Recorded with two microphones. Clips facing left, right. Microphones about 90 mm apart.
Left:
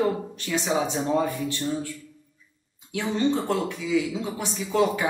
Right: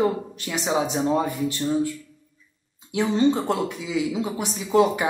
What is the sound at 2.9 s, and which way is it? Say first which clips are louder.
Speech: right 4 dB; 20° right (ahead or behind).